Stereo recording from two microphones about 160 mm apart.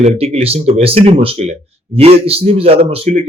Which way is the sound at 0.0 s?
40° right (ahead or behind).